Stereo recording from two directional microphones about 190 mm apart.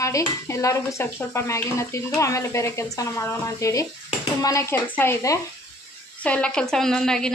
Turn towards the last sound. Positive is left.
turn(degrees=5)  # may be behind; listen again after turning